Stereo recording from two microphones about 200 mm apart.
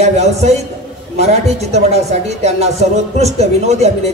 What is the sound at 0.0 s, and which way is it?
A woman's voice, 35° right (ahead or behind).